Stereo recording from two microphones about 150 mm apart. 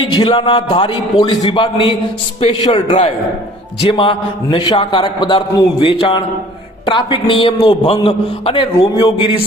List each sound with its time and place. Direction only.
0.1 s a man's voice: 30° left (ahead or behind)